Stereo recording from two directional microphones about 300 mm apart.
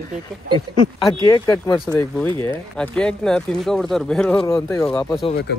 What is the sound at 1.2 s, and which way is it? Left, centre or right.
A man's voice, centre.